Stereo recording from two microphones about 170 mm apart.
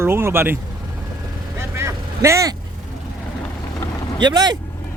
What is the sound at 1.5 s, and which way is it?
Vehicle, 15° right (ahead or behind).